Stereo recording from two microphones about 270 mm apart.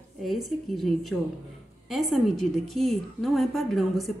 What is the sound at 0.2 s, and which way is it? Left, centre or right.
A woman's voice, centre.